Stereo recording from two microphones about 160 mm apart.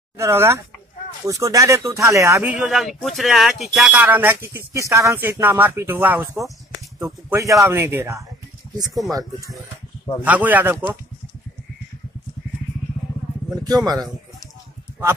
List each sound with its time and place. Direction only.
0.2 s speech: 15° right (ahead or behind)
2.5 s speech: 5° right (ahead or behind)
10.2 s speech: 10° right (ahead or behind)
13.7 s speech: 25° right (ahead or behind)